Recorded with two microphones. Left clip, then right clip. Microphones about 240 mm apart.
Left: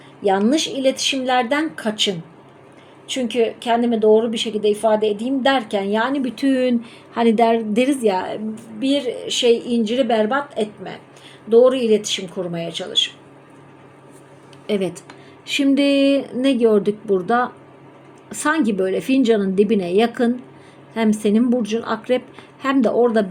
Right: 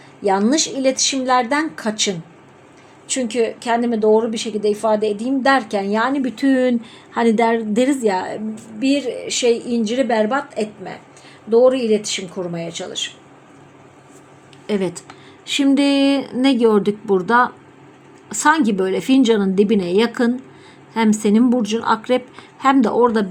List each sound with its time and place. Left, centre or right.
0.2 s a woman's voice: centre
3.3 s a woman's voice: centre
5.0 s a woman's voice: left
5.4 s a woman's voice: centre
14.7 s a woman's voice: centre